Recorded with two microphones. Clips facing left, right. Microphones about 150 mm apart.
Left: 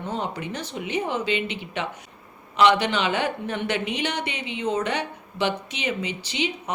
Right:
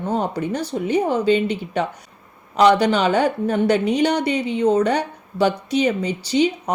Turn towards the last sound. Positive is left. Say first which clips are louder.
# right 10 dB
turn(degrees=-40)  # may be behind; listen again after turning